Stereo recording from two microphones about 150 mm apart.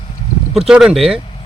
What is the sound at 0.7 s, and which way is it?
Speech, 5° right (ahead or behind).